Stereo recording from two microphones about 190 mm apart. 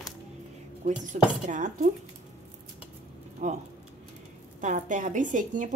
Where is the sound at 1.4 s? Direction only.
40° right (ahead or behind).